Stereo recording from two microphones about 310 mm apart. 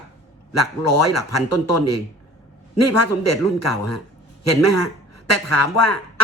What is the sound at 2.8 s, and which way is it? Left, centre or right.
A man's voice, left.